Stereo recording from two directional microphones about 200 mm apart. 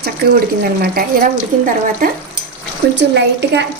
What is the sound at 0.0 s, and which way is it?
Speech, 50° right (ahead or behind).